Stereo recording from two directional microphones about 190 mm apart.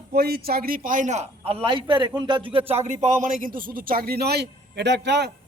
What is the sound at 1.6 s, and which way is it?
A man's voice, 25° right (ahead or behind).